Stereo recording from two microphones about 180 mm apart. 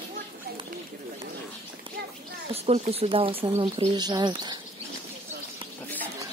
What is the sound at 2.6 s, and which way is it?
Speech, 35° right (ahead or behind).